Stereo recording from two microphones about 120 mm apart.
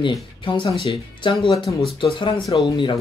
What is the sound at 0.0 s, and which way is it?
Speech, 40° left (ahead or behind).